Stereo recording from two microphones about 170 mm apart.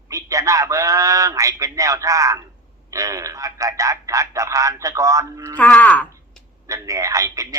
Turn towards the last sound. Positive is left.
turn(degrees=-20)  # may be behind; listen again after turning